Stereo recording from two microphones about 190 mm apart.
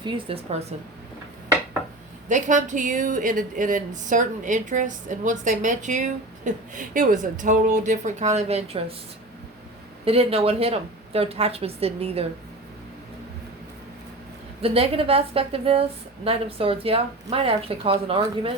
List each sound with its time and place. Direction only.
0.0 s a woman's voice: 30° right (ahead or behind)
2.3 s a woman's voice: 40° right (ahead or behind)
10.1 s a woman's voice: 30° right (ahead or behind)
14.6 s a woman's voice: 30° right (ahead or behind)